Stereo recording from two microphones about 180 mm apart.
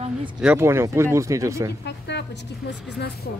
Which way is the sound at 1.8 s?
75° left (ahead or behind).